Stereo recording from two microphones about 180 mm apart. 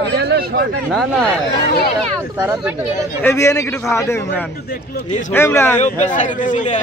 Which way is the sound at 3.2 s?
15° left (ahead or behind).